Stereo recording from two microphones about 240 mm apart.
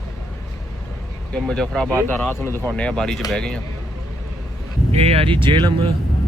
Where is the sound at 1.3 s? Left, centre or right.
Centre.